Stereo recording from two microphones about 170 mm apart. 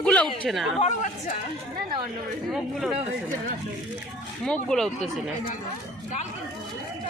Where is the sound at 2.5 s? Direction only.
Centre (ahead or behind).